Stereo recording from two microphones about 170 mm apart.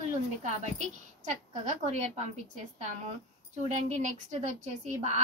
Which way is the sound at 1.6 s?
40° right (ahead or behind).